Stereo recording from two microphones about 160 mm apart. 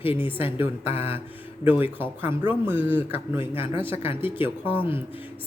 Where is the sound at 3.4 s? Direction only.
35° left (ahead or behind).